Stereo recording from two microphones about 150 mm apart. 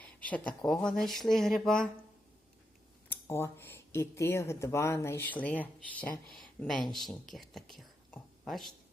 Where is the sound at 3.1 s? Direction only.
15° left (ahead or behind).